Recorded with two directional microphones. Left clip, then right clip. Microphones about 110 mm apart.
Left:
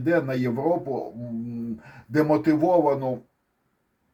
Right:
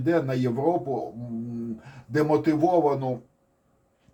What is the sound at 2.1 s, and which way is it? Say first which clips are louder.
Speech: left 2 dB; 50° left (ahead or behind).